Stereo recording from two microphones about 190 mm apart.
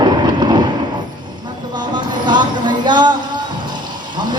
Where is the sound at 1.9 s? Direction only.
25° right (ahead or behind).